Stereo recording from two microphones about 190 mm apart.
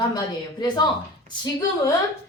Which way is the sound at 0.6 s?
20° left (ahead or behind).